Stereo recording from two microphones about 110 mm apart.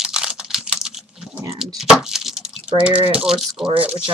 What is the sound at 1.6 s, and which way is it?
Keys jangling, centre (ahead or behind).